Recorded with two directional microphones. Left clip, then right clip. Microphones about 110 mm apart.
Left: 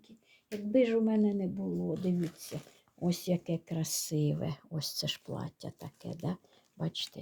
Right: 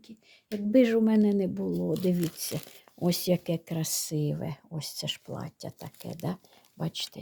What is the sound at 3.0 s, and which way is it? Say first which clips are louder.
Speech: right 6 dB; 65° right (ahead or behind).